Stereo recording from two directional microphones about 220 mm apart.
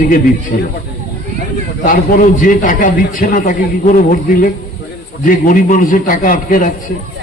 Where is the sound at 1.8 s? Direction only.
40° left (ahead or behind).